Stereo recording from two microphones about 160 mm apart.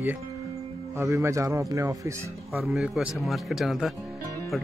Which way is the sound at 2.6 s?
5° right (ahead or behind).